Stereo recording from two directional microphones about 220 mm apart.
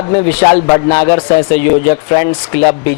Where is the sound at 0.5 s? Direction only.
30° left (ahead or behind).